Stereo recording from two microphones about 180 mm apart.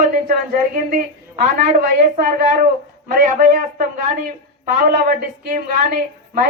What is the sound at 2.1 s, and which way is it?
A man's voice, 50° right (ahead or behind).